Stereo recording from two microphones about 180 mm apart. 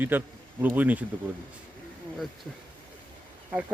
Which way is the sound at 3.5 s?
10° right (ahead or behind).